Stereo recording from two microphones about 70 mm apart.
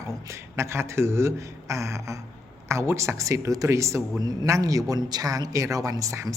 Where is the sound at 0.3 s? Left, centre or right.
Right.